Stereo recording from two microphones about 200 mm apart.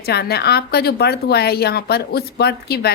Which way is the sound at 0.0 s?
55° left (ahead or behind).